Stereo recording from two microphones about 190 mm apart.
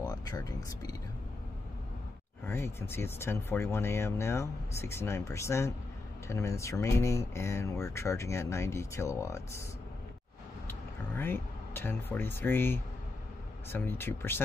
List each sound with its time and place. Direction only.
0.0 s speech: 20° left (ahead or behind)
2.4 s speech: 10° left (ahead or behind)
10.7 s speech: 10° left (ahead or behind)